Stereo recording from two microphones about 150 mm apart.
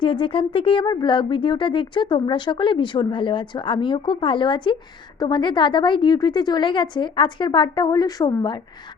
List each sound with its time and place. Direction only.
0.0 s speech: 35° left (ahead or behind)